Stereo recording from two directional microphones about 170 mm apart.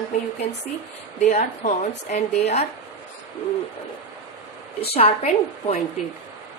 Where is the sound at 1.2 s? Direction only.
45° left (ahead or behind).